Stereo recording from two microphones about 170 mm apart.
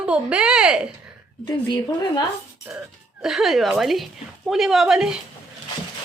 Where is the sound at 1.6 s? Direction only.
25° left (ahead or behind).